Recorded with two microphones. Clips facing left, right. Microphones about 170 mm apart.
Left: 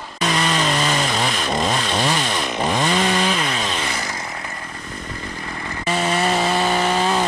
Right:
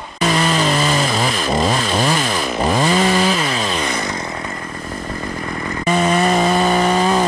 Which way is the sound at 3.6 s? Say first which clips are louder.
Right 4 dB; 40° right (ahead or behind).